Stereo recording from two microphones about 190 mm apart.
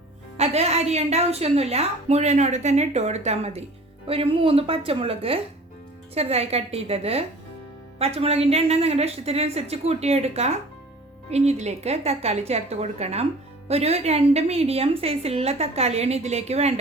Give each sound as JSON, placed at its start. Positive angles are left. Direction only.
{"t": 0.3, "sound": "a woman's voice", "side_deg": -35}